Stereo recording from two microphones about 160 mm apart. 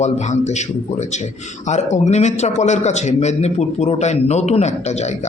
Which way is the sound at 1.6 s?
45° left (ahead or behind).